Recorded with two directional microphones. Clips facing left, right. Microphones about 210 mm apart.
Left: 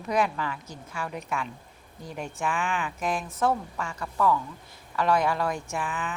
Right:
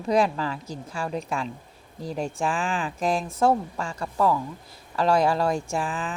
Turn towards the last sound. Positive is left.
turn(degrees=-30)  # may be behind; listen again after turning